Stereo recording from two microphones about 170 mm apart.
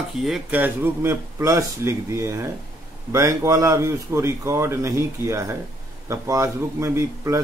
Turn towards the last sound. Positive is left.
turn(degrees=-20)  # may be behind; listen again after turning